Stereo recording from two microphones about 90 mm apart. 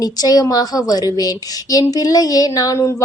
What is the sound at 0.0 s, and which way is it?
A woman's voice, 45° left (ahead or behind).